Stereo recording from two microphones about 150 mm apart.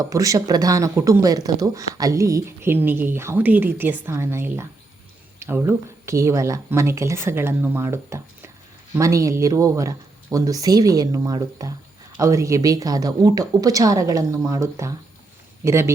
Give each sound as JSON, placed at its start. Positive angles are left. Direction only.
{"t": 0.0, "sound": "speech", "side_deg": -25}